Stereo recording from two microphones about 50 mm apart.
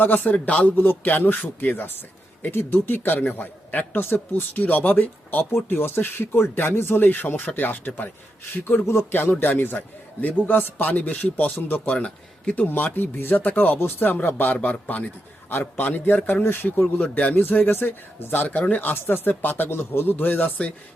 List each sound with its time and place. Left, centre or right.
0.0 s a man's voice: left
0.9 s a man's voice: left
4.0 s a man's voice: left
5.6 s a man's voice: left
9.4 s speech: left
10.2 s a man's voice: left
11.9 s speech: left
12.6 s a man's voice: left
13.7 s a man's voice: left
17.0 s speech: left
17.3 s a man's voice: left
17.7 s speech: left
18.5 s a man's voice: left